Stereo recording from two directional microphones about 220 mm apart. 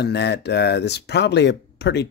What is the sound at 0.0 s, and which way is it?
Speech, 50° left (ahead or behind).